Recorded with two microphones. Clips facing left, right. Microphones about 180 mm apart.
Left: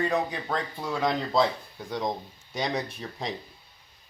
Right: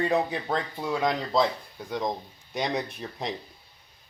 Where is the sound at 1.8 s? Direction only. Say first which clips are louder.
Right 1 dB; centre (ahead or behind).